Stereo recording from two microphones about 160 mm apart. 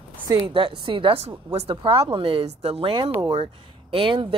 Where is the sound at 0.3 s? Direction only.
30° right (ahead or behind).